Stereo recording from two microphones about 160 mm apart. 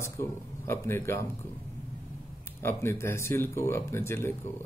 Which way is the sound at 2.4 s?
15° left (ahead or behind).